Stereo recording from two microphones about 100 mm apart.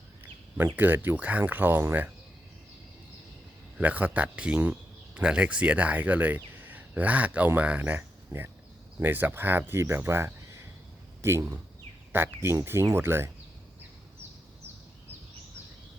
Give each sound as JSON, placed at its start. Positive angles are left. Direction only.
{"t": 0.8, "sound": "speech", "side_deg": -20}
{"t": 3.8, "sound": "speech", "side_deg": -15}